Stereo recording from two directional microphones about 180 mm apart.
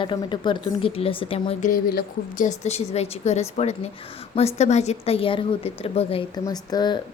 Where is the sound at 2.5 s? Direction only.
35° left (ahead or behind).